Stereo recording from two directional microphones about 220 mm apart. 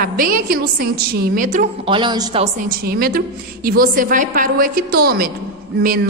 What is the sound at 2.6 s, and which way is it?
A woman's voice, 40° right (ahead or behind).